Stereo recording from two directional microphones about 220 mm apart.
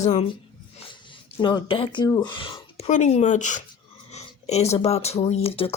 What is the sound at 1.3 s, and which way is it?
Speech, 20° left (ahead or behind).